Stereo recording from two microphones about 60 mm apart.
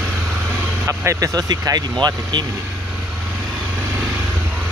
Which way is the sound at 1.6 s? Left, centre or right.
Right.